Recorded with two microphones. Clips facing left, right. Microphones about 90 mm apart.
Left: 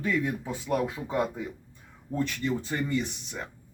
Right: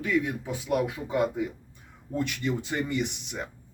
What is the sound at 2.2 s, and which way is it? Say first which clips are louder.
Speech: even; 15° right (ahead or behind).